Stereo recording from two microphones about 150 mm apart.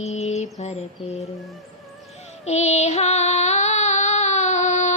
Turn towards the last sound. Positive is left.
turn(degrees=50)  # may be behind; listen again after turning